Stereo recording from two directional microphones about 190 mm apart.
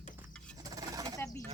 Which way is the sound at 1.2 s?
15° left (ahead or behind).